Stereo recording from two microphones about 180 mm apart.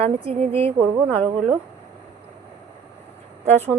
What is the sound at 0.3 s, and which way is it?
Speech, 35° right (ahead or behind).